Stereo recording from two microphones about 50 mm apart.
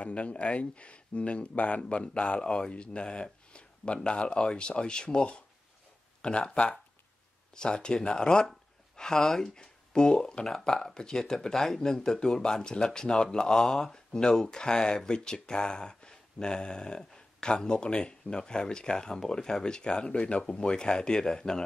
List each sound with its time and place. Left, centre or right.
0.0 s speech: left